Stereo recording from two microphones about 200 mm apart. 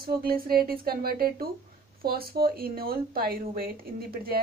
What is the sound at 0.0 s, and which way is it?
A woman's voice, 50° right (ahead or behind).